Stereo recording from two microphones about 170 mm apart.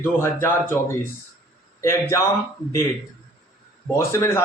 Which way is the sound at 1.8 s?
15° left (ahead or behind).